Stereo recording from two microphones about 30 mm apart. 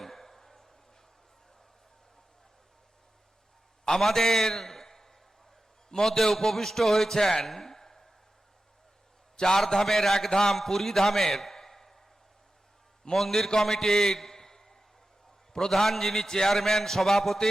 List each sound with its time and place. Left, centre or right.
0.0 s a sound: centre
3.8 s a man's voice: centre
6.1 s a man's voice: centre
9.4 s a man's voice: centre
13.1 s a man's voice: centre
15.7 s a man's voice: centre